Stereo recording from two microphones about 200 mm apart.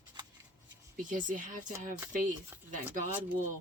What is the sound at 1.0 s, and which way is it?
Speech, 40° right (ahead or behind).